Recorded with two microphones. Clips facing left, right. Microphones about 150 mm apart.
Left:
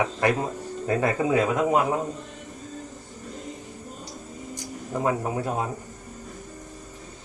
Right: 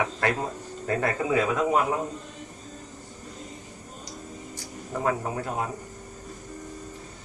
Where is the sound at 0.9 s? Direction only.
20° left (ahead or behind).